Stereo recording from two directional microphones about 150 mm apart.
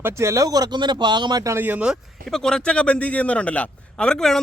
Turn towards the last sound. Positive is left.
turn(degrees=5)  # may be behind; listen again after turning